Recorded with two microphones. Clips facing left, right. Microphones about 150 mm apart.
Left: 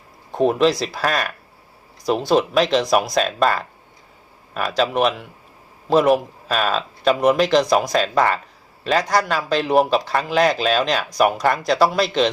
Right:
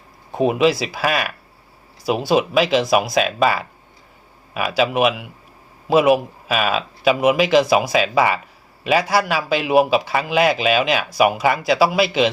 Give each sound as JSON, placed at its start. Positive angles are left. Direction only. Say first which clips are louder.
{"t": 0.3, "sound": "a man's voice", "louder": "even", "side_deg": -5}